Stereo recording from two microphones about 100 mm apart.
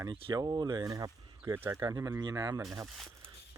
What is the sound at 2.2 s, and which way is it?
Speech, 45° right (ahead or behind).